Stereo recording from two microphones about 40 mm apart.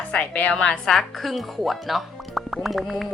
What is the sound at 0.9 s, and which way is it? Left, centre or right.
Speech, centre.